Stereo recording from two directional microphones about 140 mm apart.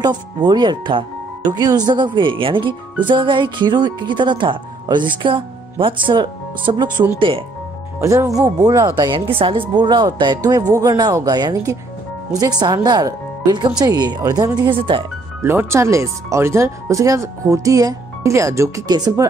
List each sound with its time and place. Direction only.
0.0 s speech: 30° right (ahead or behind)
8.0 s speech: 20° right (ahead or behind); by 15.0 s 35° right (ahead or behind)
15.4 s speech: 20° right (ahead or behind)